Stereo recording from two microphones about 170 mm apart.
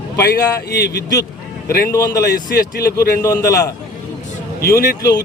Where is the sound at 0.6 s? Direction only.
70° left (ahead or behind).